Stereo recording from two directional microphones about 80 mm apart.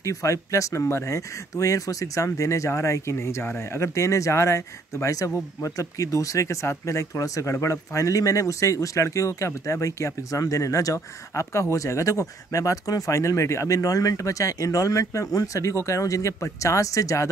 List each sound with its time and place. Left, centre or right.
0.0 s speech: left